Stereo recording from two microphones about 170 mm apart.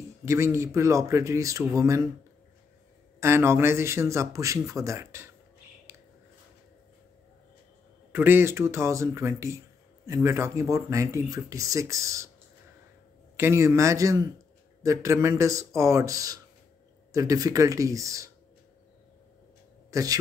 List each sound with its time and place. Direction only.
0.2 s speech: 15° right (ahead or behind)
3.2 s speech: 15° right (ahead or behind)
5.9 s a sound: 15° right (ahead or behind)
8.1 s speech: 10° right (ahead or behind)
13.4 s speech: 15° right (ahead or behind)
19.9 s speech: 20° right (ahead or behind)